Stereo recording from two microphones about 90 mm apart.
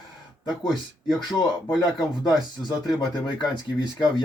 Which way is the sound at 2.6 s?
50° left (ahead or behind).